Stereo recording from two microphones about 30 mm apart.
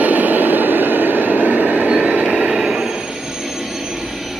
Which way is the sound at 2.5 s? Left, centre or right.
Centre.